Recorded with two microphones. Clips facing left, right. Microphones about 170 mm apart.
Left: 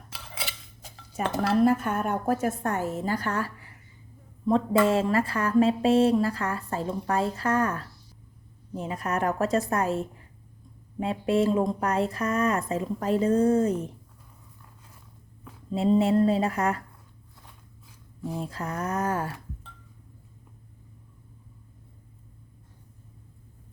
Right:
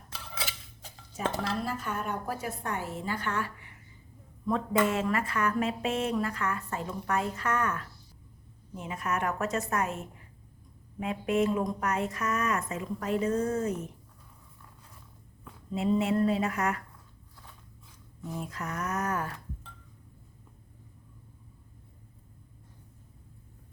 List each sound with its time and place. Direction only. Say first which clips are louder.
1.5 s a woman's voice: left 11 dB; 50° left (ahead or behind); by 13.9 s 30° left (ahead or behind)
15.7 s speech: left 5 dB; 35° left (ahead or behind)
18.3 s speech: left 3 dB; 30° left (ahead or behind)